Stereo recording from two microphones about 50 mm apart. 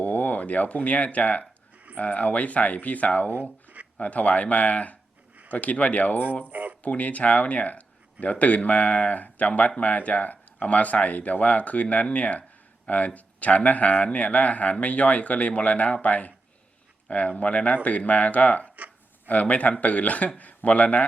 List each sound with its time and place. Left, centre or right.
0.0 s speech: left
6.5 s a sound: right
6.8 s speech: left